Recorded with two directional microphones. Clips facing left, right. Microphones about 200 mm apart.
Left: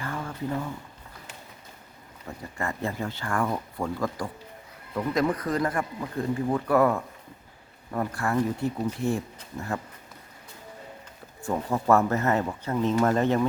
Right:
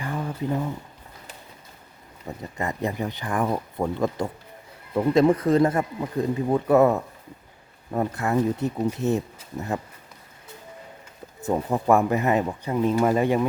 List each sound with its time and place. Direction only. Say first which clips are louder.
0.0 s a sound: right 4 dB; 15° right (ahead or behind)
2.6 s speech: right 3 dB; 20° right (ahead or behind)
11.3 s speech: right 3 dB; 20° right (ahead or behind)